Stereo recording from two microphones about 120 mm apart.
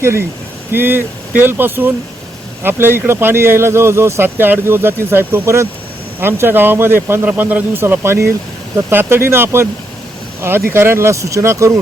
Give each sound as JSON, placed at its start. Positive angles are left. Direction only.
{"t": 0.0, "sound": "speech", "side_deg": -20}